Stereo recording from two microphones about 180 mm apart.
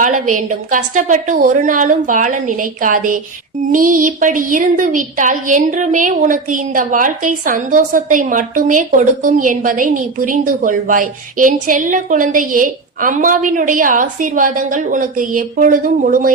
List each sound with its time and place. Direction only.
0.0 s a woman's voice: 45° right (ahead or behind)